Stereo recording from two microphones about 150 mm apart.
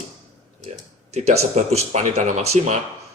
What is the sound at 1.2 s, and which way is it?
Speech, 45° right (ahead or behind).